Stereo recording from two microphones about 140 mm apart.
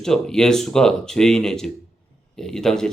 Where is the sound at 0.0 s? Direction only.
5° left (ahead or behind).